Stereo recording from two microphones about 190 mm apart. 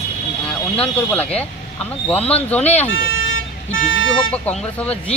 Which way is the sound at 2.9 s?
90° left.